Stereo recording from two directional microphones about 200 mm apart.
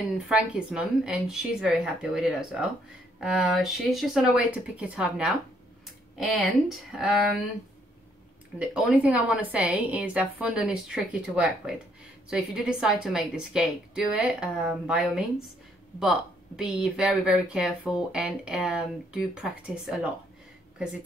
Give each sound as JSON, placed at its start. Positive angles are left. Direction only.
{"t": 0.3, "sound": "speech", "side_deg": -5}
{"t": 8.5, "sound": "a woman's voice", "side_deg": -5}